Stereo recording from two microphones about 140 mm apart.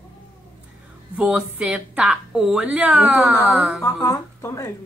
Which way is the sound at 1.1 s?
5° right (ahead or behind).